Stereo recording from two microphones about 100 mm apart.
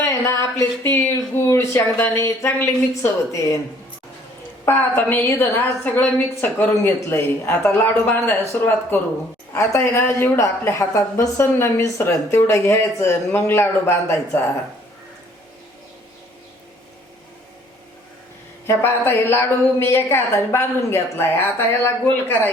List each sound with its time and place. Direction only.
0.0 s a sound: 30° left (ahead or behind)
1.5 s a woman's voice: 25° left (ahead or behind)
4.6 s a woman's voice: 25° left (ahead or behind)
18.7 s a woman's voice: 25° left (ahead or behind)